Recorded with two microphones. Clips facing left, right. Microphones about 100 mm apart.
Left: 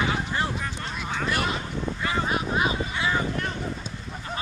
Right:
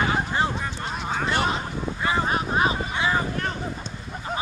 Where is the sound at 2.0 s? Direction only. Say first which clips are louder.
Right 3 dB; 30° right (ahead or behind).